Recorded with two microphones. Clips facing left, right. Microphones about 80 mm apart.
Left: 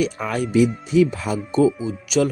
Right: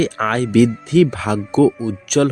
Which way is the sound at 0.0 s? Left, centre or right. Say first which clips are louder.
Right 5 dB; right.